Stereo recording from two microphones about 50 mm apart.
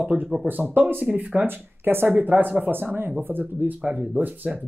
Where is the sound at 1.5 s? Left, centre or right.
Right.